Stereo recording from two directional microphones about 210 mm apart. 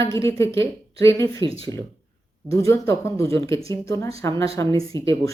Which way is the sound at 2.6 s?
15° left (ahead or behind).